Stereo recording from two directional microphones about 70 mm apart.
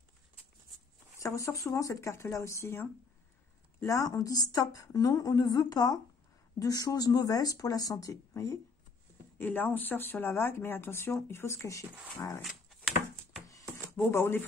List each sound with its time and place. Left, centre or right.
1.2 s speech: left
3.8 s a woman's voice: left
6.6 s a woman's voice: left
8.3 s speech: left
9.4 s speech: left
13.9 s speech: left